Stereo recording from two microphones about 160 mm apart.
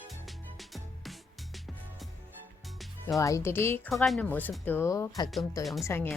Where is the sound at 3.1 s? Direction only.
20° left (ahead or behind).